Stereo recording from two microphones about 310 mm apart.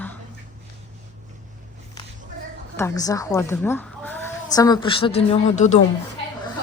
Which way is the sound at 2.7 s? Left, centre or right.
Centre.